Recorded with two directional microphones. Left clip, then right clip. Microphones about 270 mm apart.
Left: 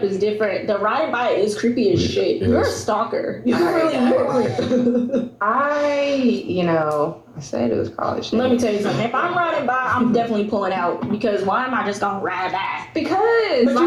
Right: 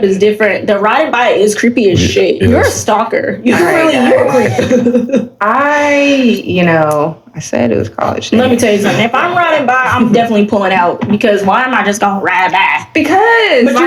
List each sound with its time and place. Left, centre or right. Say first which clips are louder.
0.2 s speech: right 10 dB; right